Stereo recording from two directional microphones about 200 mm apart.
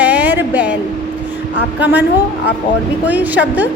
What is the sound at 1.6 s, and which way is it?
Speech, 60° left (ahead or behind).